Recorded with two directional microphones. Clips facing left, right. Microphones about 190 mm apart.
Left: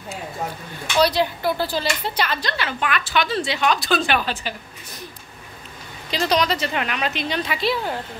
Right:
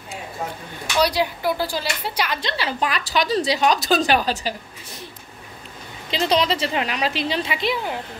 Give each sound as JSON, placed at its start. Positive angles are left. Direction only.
{"t": 0.9, "sound": "speech", "side_deg": -10}
{"t": 2.4, "sound": "a woman's voice", "side_deg": -30}
{"t": 6.0, "sound": "a woman's voice", "side_deg": -25}